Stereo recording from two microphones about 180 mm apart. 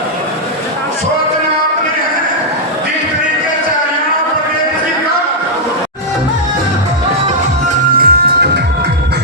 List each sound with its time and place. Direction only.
7.9 s music: 65° right (ahead or behind)